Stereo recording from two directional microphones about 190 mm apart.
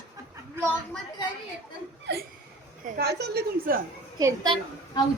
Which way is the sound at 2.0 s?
55° right (ahead or behind).